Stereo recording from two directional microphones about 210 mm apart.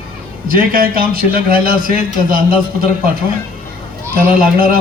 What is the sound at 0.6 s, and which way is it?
A man's voice, 40° right (ahead or behind).